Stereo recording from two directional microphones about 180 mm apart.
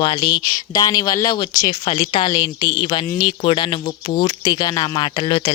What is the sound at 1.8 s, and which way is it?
Speech, 30° left (ahead or behind).